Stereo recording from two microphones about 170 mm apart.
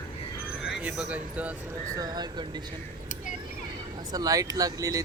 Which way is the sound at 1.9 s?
25° right (ahead or behind).